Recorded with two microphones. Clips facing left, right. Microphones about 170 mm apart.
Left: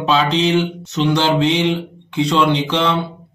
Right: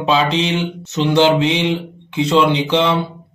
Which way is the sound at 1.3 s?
5° right (ahead or behind).